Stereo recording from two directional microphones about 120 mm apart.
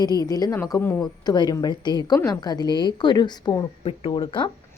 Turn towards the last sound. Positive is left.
turn(degrees=45)  # may be behind; listen again after turning